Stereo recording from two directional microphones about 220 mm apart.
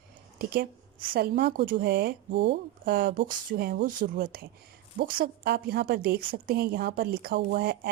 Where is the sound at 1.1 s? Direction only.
45° right (ahead or behind).